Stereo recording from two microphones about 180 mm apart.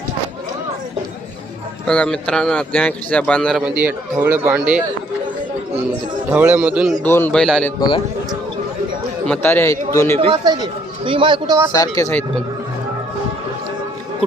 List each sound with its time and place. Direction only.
1.9 s a man's voice: 5° left (ahead or behind)
3.6 s speech: 10° right (ahead or behind)
6.3 s speech: 10° right (ahead or behind)
7.0 s a man's voice: 10° left (ahead or behind)
7.8 s speech: 30° left (ahead or behind)
9.2 s a man's voice: 10° left (ahead or behind)
10.2 s speech: 25° right (ahead or behind)
11.7 s speech: 20° left (ahead or behind)